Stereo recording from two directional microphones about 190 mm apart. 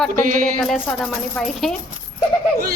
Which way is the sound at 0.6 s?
Centre (ahead or behind).